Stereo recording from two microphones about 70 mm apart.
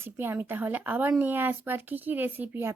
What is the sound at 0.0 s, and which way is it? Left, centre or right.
A woman's voice, right.